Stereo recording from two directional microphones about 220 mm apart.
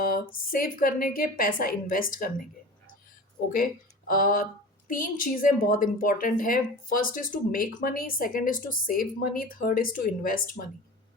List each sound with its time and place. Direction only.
0.0 s a woman's voice: 40° left (ahead or behind)
3.5 s a woman's voice: 40° left (ahead or behind)